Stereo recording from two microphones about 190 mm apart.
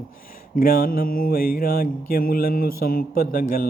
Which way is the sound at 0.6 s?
50° left (ahead or behind).